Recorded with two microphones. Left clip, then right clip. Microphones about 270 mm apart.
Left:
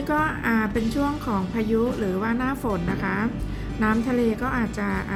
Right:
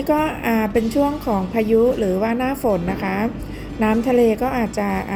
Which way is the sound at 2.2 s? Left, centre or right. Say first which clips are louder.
Right 5 dB; centre.